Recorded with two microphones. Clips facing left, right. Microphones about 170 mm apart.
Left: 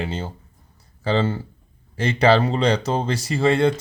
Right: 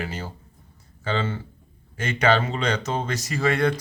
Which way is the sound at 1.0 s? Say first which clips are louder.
Left 5 dB; 35° left (ahead or behind).